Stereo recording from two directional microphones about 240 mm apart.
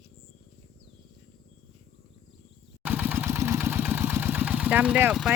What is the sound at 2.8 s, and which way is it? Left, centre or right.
Vehicle, centre.